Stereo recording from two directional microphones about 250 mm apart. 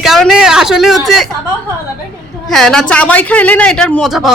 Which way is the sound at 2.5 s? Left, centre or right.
Centre.